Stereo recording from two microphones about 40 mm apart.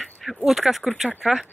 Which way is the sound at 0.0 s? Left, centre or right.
Centre.